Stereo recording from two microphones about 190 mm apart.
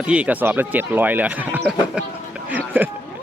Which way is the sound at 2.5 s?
10° right (ahead or behind).